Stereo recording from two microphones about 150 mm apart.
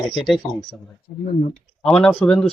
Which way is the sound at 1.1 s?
60° left (ahead or behind).